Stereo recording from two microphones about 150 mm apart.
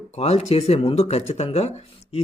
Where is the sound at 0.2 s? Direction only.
45° left (ahead or behind).